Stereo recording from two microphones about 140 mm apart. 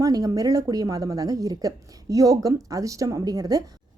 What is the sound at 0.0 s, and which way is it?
A woman's voice, 25° right (ahead or behind).